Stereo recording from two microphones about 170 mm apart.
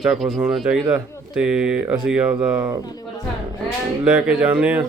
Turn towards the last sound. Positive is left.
turn(degrees=-5)  # may be behind; listen again after turning